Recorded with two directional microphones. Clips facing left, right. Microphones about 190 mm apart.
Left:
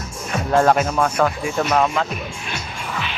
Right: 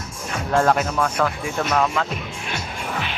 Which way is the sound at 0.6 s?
25° left (ahead or behind).